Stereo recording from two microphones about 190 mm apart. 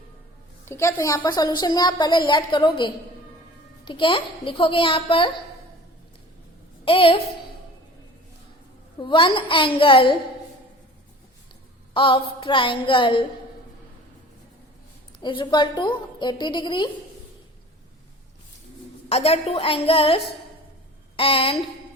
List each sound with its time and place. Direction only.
0.6 s a woman's voice: 15° left (ahead or behind)
6.8 s a woman's voice: 30° left (ahead or behind)
9.0 s a woman's voice: 25° left (ahead or behind)
11.9 s a woman's voice: 25° left (ahead or behind)
15.2 s a woman's voice: 25° left (ahead or behind)
19.0 s a woman's voice: 30° left (ahead or behind)